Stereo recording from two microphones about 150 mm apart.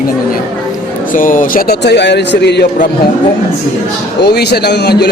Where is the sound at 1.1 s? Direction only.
65° left (ahead or behind).